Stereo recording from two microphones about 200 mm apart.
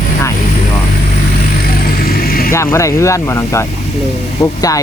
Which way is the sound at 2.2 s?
45° left (ahead or behind).